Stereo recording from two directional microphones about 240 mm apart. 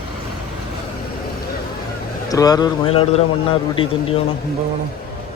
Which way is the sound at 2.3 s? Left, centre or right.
Centre.